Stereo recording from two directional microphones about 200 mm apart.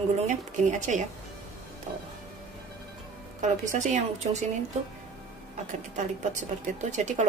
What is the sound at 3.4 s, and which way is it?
Speech, 40° right (ahead or behind).